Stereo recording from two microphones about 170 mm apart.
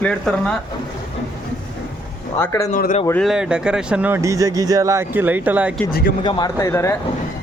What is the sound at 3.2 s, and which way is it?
Speech, 5° right (ahead or behind).